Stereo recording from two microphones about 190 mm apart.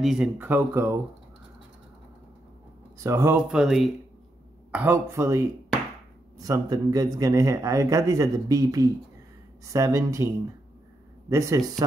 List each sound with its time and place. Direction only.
0.0 s a man's voice: 5° right (ahead or behind)
3.0 s a man's voice: 15° right (ahead or behind)